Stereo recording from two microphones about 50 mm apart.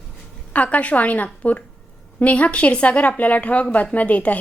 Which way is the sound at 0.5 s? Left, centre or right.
Left.